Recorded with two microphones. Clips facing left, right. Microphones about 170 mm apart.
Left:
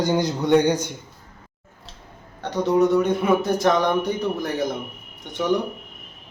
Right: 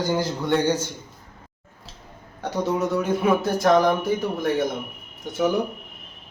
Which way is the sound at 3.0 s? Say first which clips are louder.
Left 1 dB; centre (ahead or behind).